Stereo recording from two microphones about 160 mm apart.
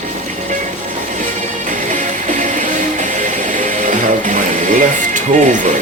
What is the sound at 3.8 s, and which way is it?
Music, 55° right (ahead or behind).